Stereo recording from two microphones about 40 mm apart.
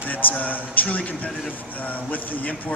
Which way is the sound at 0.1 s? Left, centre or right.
Left.